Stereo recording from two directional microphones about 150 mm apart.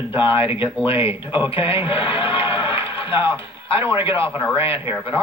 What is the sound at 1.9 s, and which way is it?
Speech, 35° left (ahead or behind).